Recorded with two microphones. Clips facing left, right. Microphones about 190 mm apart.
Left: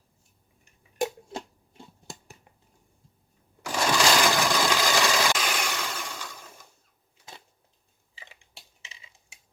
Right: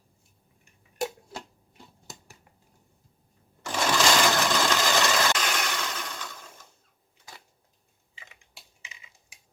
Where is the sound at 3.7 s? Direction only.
10° left (ahead or behind).